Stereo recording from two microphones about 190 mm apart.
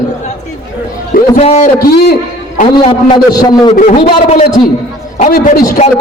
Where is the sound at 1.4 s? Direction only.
35° left (ahead or behind).